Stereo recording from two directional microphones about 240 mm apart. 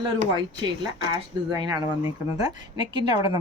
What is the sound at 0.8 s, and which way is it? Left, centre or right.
Speech, centre.